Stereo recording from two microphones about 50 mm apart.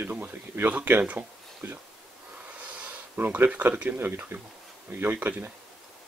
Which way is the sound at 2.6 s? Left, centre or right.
Right.